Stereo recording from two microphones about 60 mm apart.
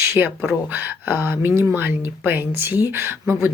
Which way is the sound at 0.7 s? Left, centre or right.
Right.